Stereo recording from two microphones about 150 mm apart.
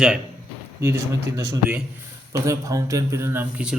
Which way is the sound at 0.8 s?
20° right (ahead or behind).